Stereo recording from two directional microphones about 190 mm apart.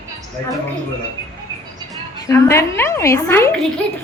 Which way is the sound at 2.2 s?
15° left (ahead or behind).